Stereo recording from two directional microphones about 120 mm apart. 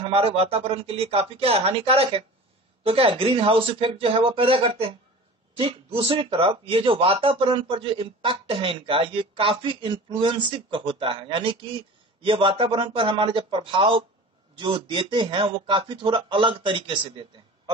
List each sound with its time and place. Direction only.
0.0 s a man's voice: 50° right (ahead or behind)